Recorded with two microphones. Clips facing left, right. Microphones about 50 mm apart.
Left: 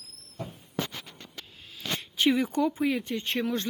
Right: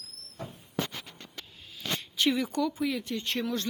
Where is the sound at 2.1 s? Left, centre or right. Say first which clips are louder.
Left 3 dB; left.